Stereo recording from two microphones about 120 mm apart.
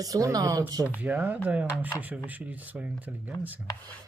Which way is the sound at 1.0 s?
15° right (ahead or behind).